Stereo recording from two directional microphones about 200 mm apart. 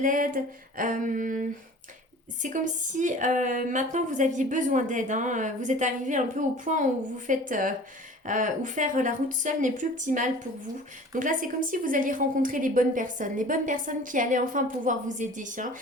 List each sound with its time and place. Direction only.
0.0 s a woman's voice: 40° right (ahead or behind)
2.4 s a woman's voice: 40° right (ahead or behind)